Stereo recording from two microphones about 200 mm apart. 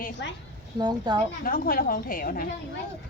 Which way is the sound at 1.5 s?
45° left (ahead or behind).